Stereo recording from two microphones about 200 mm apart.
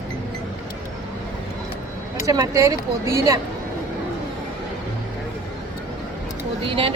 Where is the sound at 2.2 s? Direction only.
15° right (ahead or behind).